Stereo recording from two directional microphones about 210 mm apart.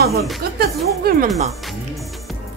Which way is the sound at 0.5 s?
45° right (ahead or behind).